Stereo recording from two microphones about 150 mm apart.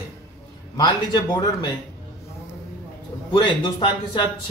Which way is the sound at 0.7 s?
30° left (ahead or behind).